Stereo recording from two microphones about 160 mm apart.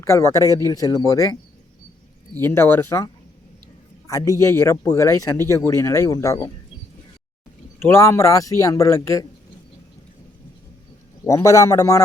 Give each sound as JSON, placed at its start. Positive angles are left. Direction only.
{"t": 0.0, "sound": "speech", "side_deg": 20}
{"t": 7.8, "sound": "speech", "side_deg": 15}
{"t": 11.3, "sound": "speech", "side_deg": 20}